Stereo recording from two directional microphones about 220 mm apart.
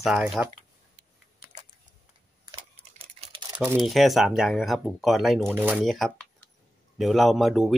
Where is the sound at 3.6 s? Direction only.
5° right (ahead or behind).